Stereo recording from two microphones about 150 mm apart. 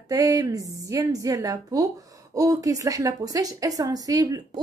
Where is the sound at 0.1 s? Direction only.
25° right (ahead or behind).